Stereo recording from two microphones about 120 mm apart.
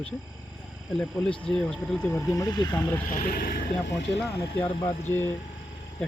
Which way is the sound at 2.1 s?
30° left (ahead or behind).